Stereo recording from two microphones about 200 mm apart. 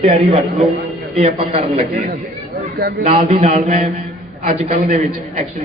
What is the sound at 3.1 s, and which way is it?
Speech, 30° right (ahead or behind).